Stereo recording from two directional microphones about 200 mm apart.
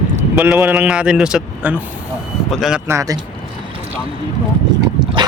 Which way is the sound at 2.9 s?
15° right (ahead or behind).